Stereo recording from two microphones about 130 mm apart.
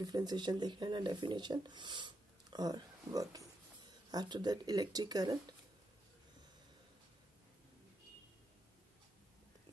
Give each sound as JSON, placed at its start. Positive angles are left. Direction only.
{"t": 0.0, "sound": "speech", "side_deg": -30}